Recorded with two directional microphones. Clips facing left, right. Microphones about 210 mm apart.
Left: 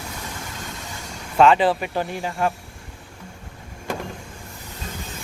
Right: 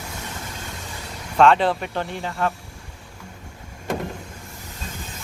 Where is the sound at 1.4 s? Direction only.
5° left (ahead or behind).